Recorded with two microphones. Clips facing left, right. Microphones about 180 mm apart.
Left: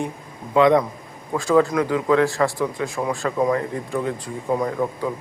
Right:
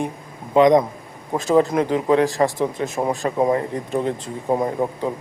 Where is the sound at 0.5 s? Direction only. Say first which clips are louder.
Right 2 dB; 20° right (ahead or behind).